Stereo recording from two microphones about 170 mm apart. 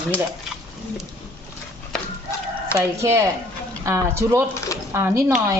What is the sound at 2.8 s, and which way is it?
A woman's voice, 20° right (ahead or behind).